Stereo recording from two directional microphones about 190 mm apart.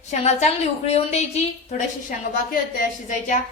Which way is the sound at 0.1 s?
35° left (ahead or behind).